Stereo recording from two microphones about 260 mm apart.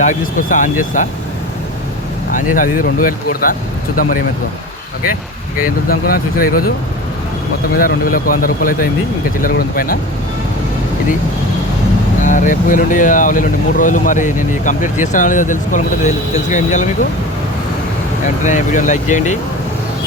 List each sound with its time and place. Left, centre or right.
0.0 s speech: left
2.6 s speech: left
5.5 s speech: left
7.8 s speech: left
12.2 s speech: left
18.4 s speech: left